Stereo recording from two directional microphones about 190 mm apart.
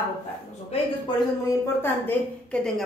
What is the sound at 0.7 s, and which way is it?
Speech, 25° left (ahead or behind).